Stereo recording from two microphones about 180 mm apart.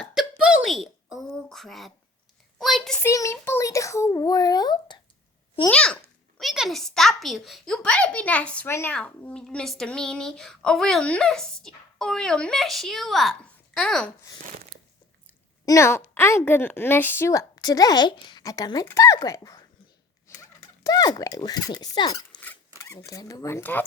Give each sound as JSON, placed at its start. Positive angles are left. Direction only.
{"t": 0.0, "sound": "a sound", "side_deg": 0}
{"t": 3.0, "sound": "a sound", "side_deg": 15}
{"t": 5.6, "sound": "a child's voice", "side_deg": 5}
{"t": 15.6, "sound": "speech", "side_deg": 15}
{"t": 20.8, "sound": "speech", "side_deg": 20}
{"t": 22.4, "sound": "zipper", "side_deg": 10}